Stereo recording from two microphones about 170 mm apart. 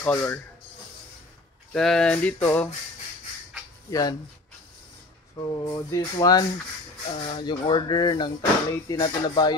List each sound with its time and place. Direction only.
0.0 s speech: 15° left (ahead or behind)
1.7 s speech: 5° left (ahead or behind)
3.9 s speech: 25° left (ahead or behind)
5.4 s speech: 20° left (ahead or behind)